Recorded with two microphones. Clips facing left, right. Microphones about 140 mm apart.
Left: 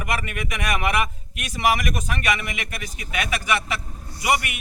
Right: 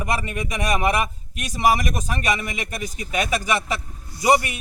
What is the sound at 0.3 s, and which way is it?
A man's voice, 35° right (ahead or behind).